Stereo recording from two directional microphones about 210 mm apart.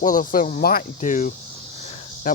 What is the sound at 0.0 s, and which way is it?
Speech, 40° left (ahead or behind).